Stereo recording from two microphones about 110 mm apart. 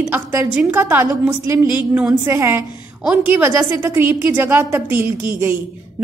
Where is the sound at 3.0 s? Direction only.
15° right (ahead or behind).